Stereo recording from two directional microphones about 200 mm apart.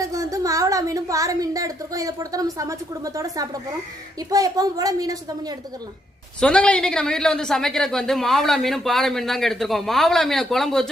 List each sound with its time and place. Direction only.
0.0 s a woman's voice: 15° right (ahead or behind)
6.4 s speech: 5° left (ahead or behind)